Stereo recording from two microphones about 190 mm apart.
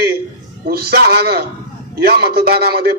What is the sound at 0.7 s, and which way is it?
A man's voice, 55° right (ahead or behind).